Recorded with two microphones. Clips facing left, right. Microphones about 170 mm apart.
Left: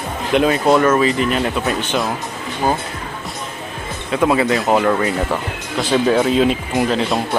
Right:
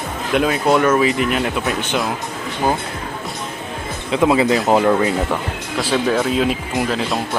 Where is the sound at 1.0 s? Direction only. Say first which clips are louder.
Left 1 dB; 10° right (ahead or behind).